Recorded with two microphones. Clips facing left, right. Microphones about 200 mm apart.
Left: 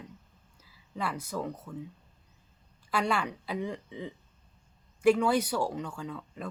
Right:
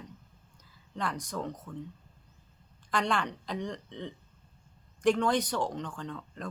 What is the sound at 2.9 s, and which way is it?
Speech, 5° left (ahead or behind).